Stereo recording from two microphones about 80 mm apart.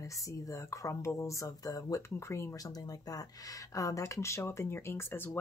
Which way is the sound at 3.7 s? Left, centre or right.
Left.